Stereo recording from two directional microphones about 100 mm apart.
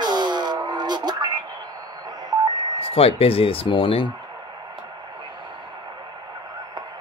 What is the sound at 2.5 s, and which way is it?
Speech, 70° left (ahead or behind).